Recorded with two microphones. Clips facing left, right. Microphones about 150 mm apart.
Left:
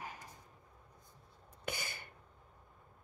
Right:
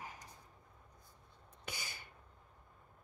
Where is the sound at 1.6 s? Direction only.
55° left (ahead or behind).